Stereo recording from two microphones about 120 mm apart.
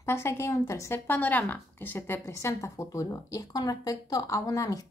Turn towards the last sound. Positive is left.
turn(degrees=30)  # may be behind; listen again after turning